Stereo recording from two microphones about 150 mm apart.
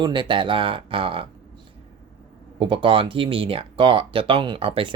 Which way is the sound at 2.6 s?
35° right (ahead or behind).